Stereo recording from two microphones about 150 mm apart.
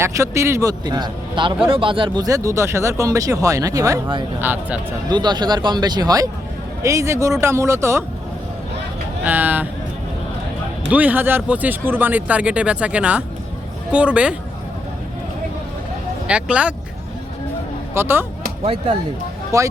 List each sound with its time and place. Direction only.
0.0 s speech: 20° right (ahead or behind)
5.0 s speech: 30° right (ahead or behind)
9.2 s speech: 10° right (ahead or behind)
10.8 s speech: 10° right (ahead or behind)
16.2 s speech: 5° right (ahead or behind)
17.9 s speech: 15° right (ahead or behind)
19.5 s speech: 20° right (ahead or behind)